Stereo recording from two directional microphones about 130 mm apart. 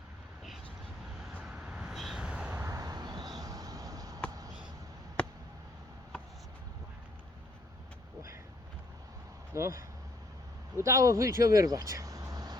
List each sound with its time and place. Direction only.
1.2 s vehicle: 5° right (ahead or behind); by 4.2 s 30° right (ahead or behind)
5.2 s a sound: 10° left (ahead or behind)
9.6 s speech: 20° right (ahead or behind)